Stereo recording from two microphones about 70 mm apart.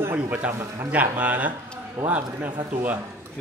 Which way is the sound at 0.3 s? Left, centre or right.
Right.